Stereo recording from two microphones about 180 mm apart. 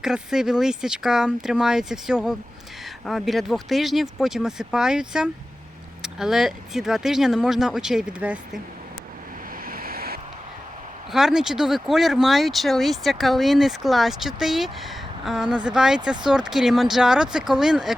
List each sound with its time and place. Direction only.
0.0 s speech: 5° right (ahead or behind)
9.6 s vehicle: 55° right (ahead or behind)
11.1 s speech: centre (ahead or behind)